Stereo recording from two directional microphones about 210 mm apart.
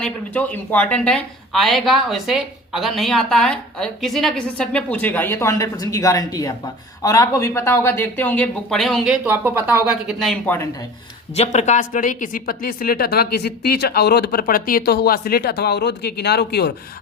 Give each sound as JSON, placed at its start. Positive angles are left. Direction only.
{"t": 0.0, "sound": "speech", "side_deg": 5}
{"t": 11.3, "sound": "a woman's voice", "side_deg": 35}